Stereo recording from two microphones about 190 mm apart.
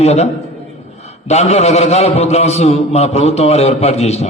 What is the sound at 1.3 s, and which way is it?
A man's voice, 35° left (ahead or behind).